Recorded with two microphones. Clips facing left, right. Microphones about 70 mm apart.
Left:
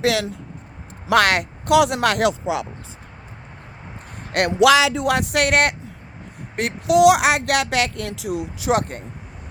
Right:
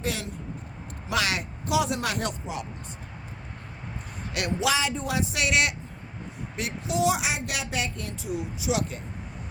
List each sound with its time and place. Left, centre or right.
0.0 s speech: left
1.0 s speech: left
4.3 s speech: left